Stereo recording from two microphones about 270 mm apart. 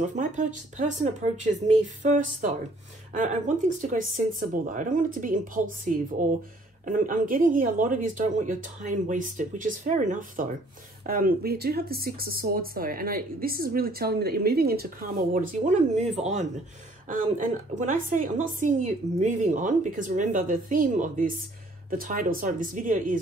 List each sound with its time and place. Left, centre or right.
0.0 s a woman's voice: right